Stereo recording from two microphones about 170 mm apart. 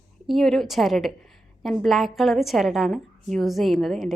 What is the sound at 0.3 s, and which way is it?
A woman's voice, centre (ahead or behind).